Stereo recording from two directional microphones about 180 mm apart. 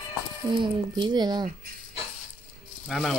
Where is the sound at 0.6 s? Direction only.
25° right (ahead or behind).